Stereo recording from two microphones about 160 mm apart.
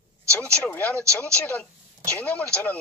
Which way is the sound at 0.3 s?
5° left (ahead or behind).